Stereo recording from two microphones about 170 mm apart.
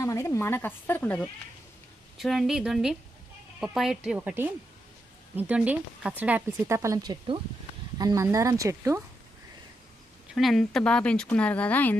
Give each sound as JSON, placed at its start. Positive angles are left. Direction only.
{"t": 0.0, "sound": "speech", "side_deg": 15}
{"t": 10.3, "sound": "speech", "side_deg": 0}